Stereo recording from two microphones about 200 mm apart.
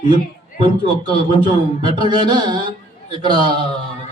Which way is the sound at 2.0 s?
20° right (ahead or behind).